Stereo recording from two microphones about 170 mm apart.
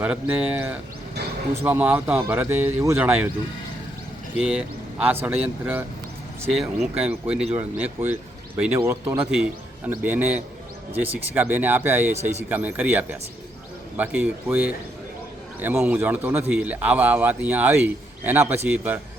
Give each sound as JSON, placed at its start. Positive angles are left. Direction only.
{"t": 0.0, "sound": "a man's voice", "side_deg": -10}
{"t": 4.4, "sound": "a man's voice", "side_deg": -5}
{"t": 6.9, "sound": "a man's voice", "side_deg": -10}
{"t": 12.1, "sound": "speech", "side_deg": -40}
{"t": 12.5, "sound": "a man's voice", "side_deg": -10}